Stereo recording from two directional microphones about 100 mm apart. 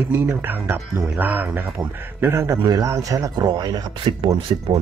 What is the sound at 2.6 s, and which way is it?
Speech, 40° right (ahead or behind).